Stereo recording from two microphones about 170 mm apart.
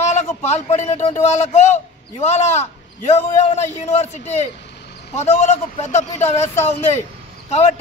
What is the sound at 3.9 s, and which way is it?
Speech, 40° left (ahead or behind).